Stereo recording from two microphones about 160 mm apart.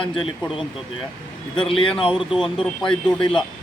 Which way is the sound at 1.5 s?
30° left (ahead or behind).